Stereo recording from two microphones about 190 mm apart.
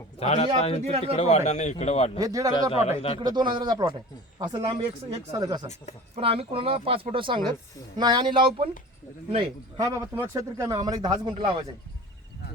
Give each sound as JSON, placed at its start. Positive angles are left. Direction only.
{"t": 0.2, "sound": "speech", "side_deg": 35}
{"t": 0.9, "sound": "speech", "side_deg": -35}
{"t": 1.1, "sound": "speech", "side_deg": 35}
{"t": 2.1, "sound": "speech", "side_deg": -20}
{"t": 2.8, "sound": "speech", "side_deg": 30}
{"t": 3.2, "sound": "speech", "side_deg": -25}
{"t": 6.1, "sound": "speech", "side_deg": -30}